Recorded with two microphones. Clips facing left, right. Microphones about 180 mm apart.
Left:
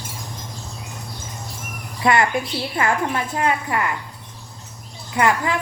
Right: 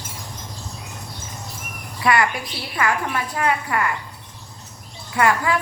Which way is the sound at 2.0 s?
25° left (ahead or behind).